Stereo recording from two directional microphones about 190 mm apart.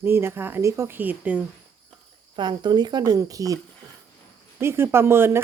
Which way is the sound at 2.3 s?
25° right (ahead or behind).